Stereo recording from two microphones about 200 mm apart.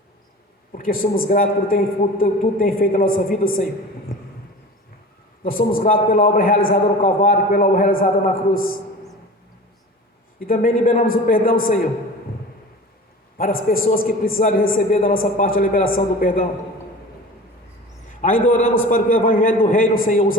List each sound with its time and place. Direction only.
0.7 s a man's voice: 45° left (ahead or behind)
5.5 s a man's voice: 45° left (ahead or behind)
10.4 s a man's voice: 45° left (ahead or behind)
13.3 s a man's voice: 45° left (ahead or behind)
18.2 s a man's voice: 40° left (ahead or behind)